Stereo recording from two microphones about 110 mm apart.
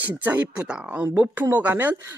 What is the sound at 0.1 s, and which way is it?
A woman's voice, 15° right (ahead or behind).